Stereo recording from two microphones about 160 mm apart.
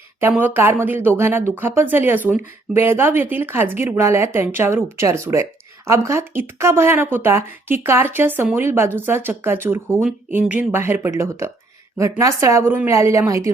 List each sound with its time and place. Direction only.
0.2 s a woman's voice: 10° right (ahead or behind)